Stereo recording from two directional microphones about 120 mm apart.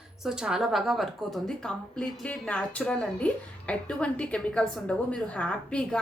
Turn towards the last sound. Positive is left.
turn(degrees=10)  # may be behind; listen again after turning